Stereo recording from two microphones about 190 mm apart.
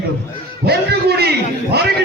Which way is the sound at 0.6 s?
55° right (ahead or behind).